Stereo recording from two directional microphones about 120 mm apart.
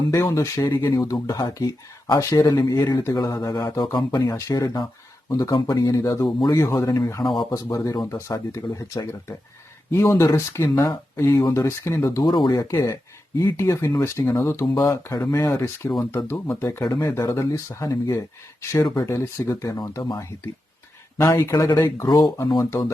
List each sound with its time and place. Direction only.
0.1 s speech: 25° left (ahead or behind)
12.2 s speech: 40° left (ahead or behind)
12.5 s speech: 25° left (ahead or behind)